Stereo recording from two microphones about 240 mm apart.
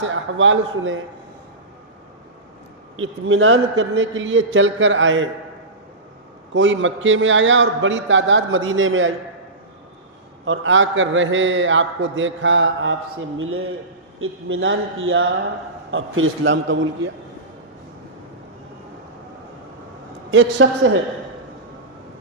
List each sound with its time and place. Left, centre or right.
0.0 s a man's voice: right
2.9 s a man's voice: right
6.5 s a man's voice: right
10.4 s a man's voice: right
20.6 s a man's voice: right